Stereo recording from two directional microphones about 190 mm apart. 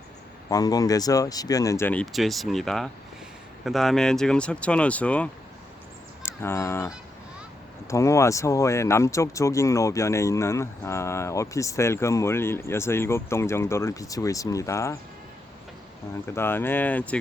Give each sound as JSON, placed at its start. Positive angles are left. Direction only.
{"t": 0.5, "sound": "speech", "side_deg": 20}
{"t": 16.3, "sound": "speech", "side_deg": 10}